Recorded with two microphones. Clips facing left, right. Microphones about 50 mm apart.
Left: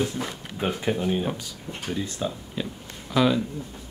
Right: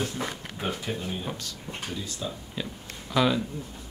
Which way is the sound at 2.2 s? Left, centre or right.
Centre.